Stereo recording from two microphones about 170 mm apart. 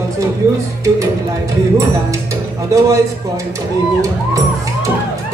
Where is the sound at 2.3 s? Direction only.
20° right (ahead or behind).